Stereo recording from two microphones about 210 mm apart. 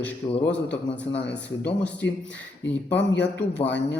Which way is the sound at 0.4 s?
55° left (ahead or behind).